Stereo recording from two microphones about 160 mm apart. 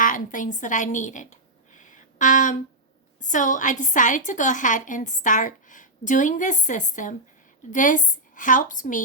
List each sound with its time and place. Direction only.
0.0 s a woman's voice: 55° left (ahead or behind)
1.9 s a sound: 50° left (ahead or behind)
3.2 s a woman's voice: 55° left (ahead or behind)